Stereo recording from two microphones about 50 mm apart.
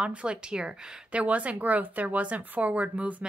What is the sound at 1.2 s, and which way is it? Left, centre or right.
Speech, right.